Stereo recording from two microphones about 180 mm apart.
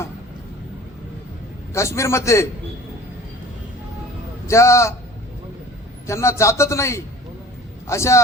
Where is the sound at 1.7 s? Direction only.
15° left (ahead or behind).